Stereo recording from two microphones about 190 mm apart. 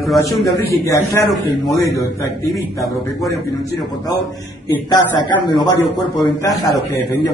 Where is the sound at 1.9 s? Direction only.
15° left (ahead or behind).